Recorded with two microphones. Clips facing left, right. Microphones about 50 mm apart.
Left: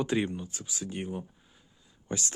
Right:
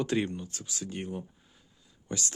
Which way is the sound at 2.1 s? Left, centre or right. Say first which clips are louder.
Left 1 dB; left.